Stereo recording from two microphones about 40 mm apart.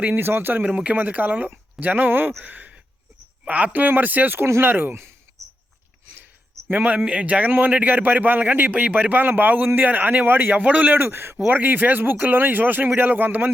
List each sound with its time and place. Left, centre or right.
0.1 s speech: right
0.6 s speech: right
2.4 s speech: right
4.4 s speech: right
6.7 s speech: right
7.0 s speech: right
10.9 s speech: right
11.4 s speech: right